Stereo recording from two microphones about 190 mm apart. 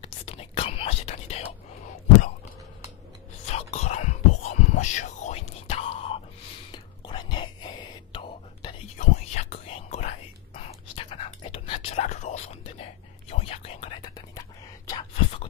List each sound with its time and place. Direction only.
0.0 s whispering: 30° left (ahead or behind)
3.4 s whispering: 35° left (ahead or behind)
8.9 s whispering: 35° left (ahead or behind); by 15.4 s 20° left (ahead or behind)